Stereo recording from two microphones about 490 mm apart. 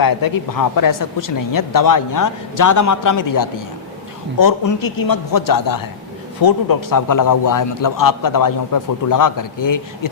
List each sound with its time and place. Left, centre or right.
0.0 s a man's voice: left